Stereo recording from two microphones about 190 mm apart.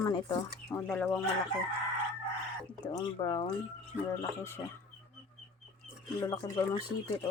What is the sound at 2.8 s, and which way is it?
Speech, 20° left (ahead or behind).